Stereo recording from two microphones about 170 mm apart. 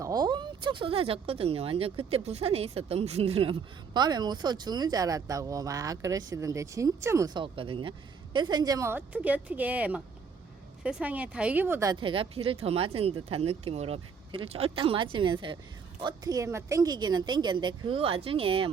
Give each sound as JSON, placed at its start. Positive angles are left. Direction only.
{"t": 0.0, "sound": "speech", "side_deg": -20}
{"t": 3.9, "sound": "speech", "side_deg": -25}